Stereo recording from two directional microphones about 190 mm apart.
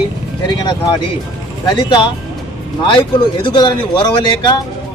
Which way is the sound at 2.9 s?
25° left (ahead or behind).